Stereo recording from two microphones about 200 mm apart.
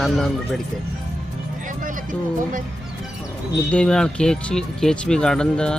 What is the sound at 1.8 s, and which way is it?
Speech, 40° right (ahead or behind).